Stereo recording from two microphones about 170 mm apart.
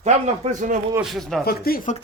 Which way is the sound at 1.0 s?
Centre (ahead or behind).